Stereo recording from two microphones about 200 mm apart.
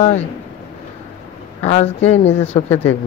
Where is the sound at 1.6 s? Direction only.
30° left (ahead or behind).